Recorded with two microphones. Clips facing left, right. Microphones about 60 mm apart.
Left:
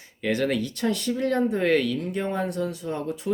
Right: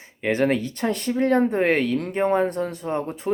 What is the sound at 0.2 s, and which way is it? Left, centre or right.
Speech, right.